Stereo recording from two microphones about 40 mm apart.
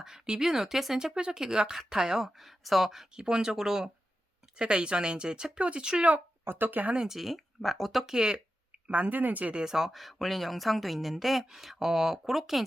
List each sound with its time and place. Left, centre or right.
0.0 s speech: centre
0.9 s speech: centre
3.2 s speech: centre
4.5 s speech: right
6.1 s speech: right
7.1 s speech: centre
8.0 s speech: centre
8.9 s speech: right
9.6 s speech: centre